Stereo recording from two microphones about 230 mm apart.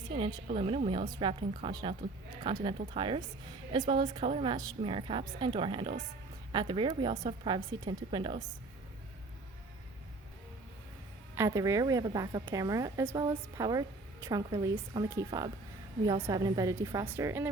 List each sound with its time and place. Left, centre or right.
0.1 s a woman's voice: right
11.3 s a woman's voice: centre